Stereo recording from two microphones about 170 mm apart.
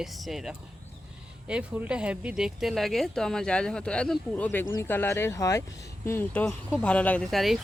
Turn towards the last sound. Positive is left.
turn(degrees=0)  # may be behind; listen again after turning